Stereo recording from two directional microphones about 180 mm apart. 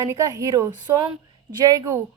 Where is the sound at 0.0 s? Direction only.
20° right (ahead or behind).